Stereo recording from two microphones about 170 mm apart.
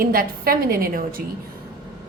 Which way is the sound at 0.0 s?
60° right (ahead or behind).